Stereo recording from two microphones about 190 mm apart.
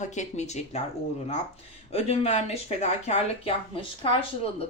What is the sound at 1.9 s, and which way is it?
A woman's voice, 30° left (ahead or behind).